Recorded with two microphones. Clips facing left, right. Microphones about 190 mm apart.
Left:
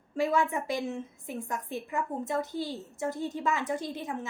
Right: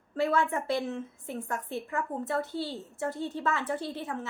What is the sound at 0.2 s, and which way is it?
A woman's voice, 10° left (ahead or behind).